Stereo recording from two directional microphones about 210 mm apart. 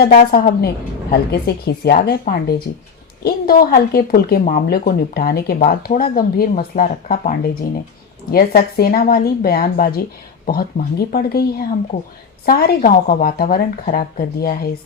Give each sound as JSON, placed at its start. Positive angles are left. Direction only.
{"t": 0.0, "sound": "a woman's voice", "side_deg": 45}